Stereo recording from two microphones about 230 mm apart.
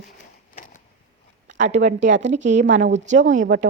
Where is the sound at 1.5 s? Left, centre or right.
Right.